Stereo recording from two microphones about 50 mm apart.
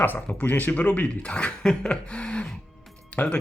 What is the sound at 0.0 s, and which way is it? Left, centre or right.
Speech, left.